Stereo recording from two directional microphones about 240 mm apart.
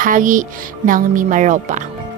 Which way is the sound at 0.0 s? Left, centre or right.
Right.